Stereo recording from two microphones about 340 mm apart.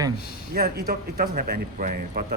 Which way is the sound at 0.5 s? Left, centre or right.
Right.